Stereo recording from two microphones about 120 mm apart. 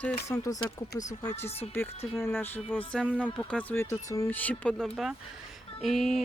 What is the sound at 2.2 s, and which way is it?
Speech, 15° left (ahead or behind).